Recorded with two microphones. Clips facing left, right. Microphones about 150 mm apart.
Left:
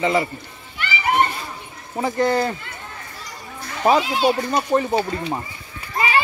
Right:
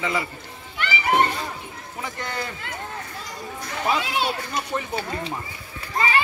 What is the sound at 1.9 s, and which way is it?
Speech, 40° left (ahead or behind).